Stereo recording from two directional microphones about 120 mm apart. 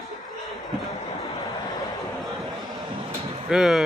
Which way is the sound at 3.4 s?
5° right (ahead or behind).